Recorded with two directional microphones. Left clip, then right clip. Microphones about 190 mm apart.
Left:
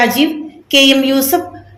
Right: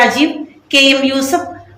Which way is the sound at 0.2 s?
50° left (ahead or behind).